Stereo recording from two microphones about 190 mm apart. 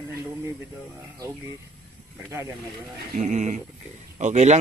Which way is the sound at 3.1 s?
40° right (ahead or behind).